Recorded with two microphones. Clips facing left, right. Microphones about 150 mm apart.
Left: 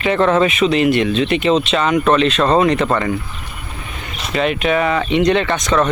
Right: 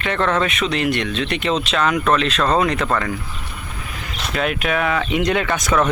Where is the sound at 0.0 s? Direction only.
5° left (ahead or behind).